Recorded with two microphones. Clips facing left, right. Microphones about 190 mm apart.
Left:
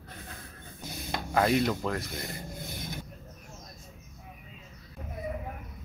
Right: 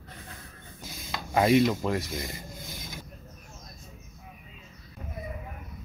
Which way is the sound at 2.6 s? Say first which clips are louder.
Left 3 dB; 60° left (ahead or behind).